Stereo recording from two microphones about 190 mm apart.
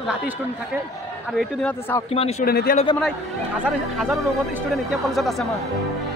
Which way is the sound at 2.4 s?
50° left (ahead or behind).